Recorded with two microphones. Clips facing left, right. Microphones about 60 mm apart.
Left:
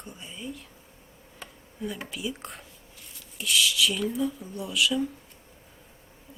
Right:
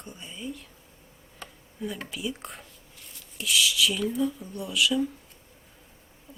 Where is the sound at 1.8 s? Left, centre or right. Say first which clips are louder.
Even; centre.